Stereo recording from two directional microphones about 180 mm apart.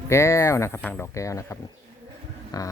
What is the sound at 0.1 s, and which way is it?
Speech, 15° left (ahead or behind).